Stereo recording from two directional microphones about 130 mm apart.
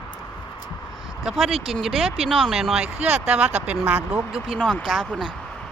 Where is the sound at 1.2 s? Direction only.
Centre (ahead or behind).